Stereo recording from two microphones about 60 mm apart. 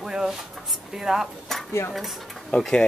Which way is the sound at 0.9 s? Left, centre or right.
Centre.